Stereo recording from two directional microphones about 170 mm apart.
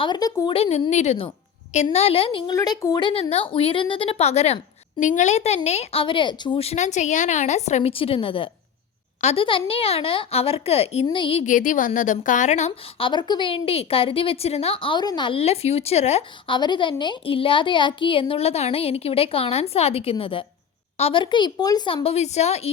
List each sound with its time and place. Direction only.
0.0 s speech: 25° left (ahead or behind)
0.5 s a woman's voice: 35° left (ahead or behind)
2.5 s a woman's voice: 20° left (ahead or behind)
11.4 s a woman's voice: 50° left (ahead or behind)
13.1 s a woman's voice: 25° left (ahead or behind)
16.6 s a woman's voice: 25° left (ahead or behind)